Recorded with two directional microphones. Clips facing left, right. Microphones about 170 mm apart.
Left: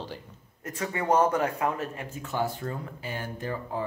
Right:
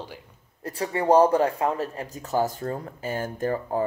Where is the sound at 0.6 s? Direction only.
35° right (ahead or behind).